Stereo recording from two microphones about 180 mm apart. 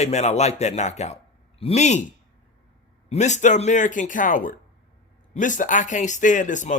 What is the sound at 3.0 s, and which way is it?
Speech, 40° left (ahead or behind).